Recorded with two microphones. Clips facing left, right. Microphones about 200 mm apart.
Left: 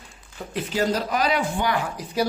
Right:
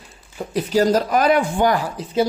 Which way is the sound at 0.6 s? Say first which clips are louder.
Right 7 dB; 45° right (ahead or behind).